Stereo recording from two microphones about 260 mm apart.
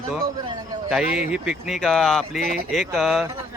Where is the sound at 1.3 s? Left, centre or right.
Centre.